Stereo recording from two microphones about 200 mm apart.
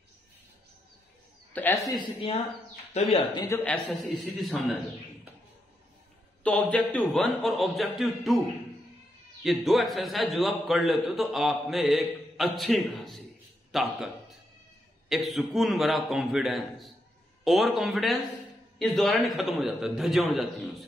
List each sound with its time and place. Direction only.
1.5 s speech: 10° left (ahead or behind)
2.0 s speech: 30° left (ahead or behind)
3.4 s a man's voice: 10° left (ahead or behind)
6.4 s a man's voice: 5° left (ahead or behind)
9.4 s a man's voice: centre (ahead or behind)